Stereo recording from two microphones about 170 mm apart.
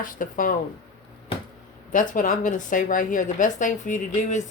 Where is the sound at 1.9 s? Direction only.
50° left (ahead or behind).